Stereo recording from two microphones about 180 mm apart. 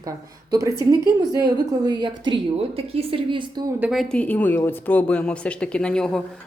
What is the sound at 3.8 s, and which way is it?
A woman's voice, centre (ahead or behind).